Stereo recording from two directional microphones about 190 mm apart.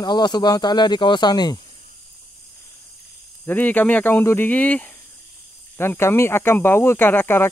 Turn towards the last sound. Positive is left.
turn(degrees=10)  # may be behind; listen again after turning